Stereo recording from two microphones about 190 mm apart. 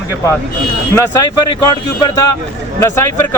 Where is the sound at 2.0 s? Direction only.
20° left (ahead or behind).